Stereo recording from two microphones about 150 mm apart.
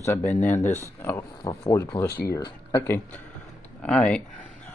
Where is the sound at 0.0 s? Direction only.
15° left (ahead or behind).